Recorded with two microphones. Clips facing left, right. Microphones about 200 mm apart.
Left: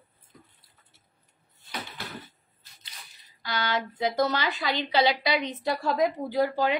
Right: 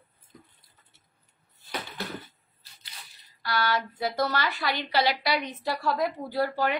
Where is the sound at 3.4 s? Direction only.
20° left (ahead or behind).